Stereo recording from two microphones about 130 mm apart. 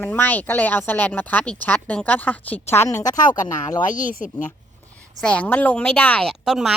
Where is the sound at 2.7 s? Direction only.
20° left (ahead or behind).